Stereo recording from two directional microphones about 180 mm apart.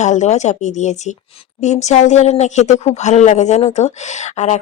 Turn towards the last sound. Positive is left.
turn(degrees=40)  # may be behind; listen again after turning